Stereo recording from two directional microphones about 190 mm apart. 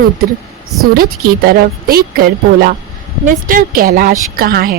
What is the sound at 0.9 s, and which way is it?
A woman's voice, 50° right (ahead or behind).